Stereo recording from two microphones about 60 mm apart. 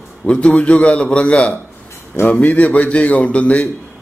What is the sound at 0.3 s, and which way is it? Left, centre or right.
A man's voice, centre.